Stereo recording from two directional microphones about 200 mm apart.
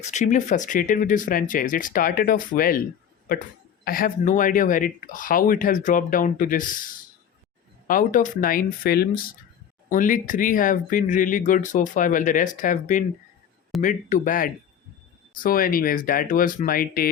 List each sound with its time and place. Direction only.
0.0 s speech: 35° left (ahead or behind)
3.8 s speech: 45° left (ahead or behind)